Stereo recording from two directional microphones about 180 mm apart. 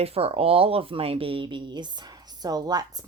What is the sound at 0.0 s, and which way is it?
Speech, 35° right (ahead or behind).